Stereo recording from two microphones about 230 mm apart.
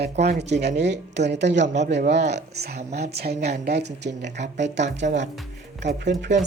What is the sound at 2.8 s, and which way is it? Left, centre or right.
Speech, right.